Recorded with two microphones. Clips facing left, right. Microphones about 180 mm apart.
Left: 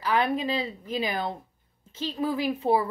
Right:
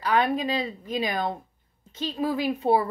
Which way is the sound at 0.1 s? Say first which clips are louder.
Right 1 dB; 30° left (ahead or behind).